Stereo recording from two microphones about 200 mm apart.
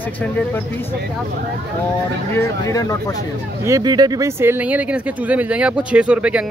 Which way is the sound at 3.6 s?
20° right (ahead or behind).